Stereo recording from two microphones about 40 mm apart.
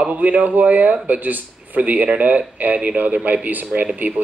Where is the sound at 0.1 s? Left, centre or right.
Right.